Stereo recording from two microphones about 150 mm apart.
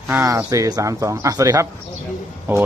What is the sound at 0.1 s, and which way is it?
Speech, 20° right (ahead or behind).